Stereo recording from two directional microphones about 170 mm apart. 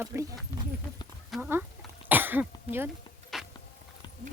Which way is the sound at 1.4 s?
10° right (ahead or behind).